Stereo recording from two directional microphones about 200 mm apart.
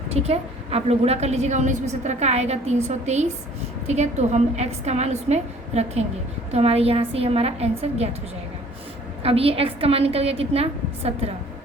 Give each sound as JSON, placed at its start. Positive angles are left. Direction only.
{"t": 0.1, "sound": "a woman's voice", "side_deg": -30}
{"t": 9.2, "sound": "a woman's voice", "side_deg": -30}